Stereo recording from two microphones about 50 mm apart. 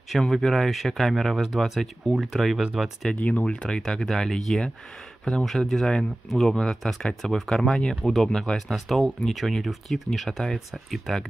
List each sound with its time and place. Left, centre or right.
0.3 s speech: centre
1.6 s speech: centre
3.2 s speech: left
3.6 s speech: centre